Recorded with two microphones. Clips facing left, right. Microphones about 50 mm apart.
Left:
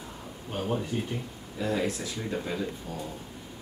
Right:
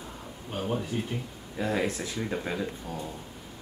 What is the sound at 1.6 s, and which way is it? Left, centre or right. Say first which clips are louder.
Speech: even; right.